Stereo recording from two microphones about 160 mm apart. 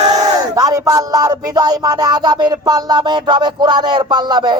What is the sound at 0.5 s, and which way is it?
Speech, 20° right (ahead or behind).